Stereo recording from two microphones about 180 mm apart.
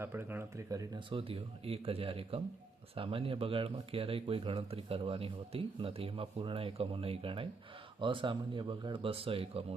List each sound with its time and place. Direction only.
0.0 s speech: 15° right (ahead or behind); by 9.6 s 30° right (ahead or behind)